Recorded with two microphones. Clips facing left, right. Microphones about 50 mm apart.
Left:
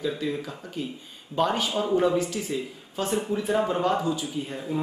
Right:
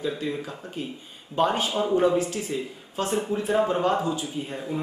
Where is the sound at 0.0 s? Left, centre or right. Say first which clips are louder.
Even; centre.